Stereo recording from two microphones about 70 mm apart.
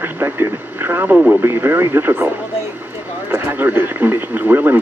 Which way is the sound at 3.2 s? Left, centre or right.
Right.